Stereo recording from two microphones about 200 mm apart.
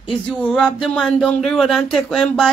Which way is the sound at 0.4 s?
5° left (ahead or behind).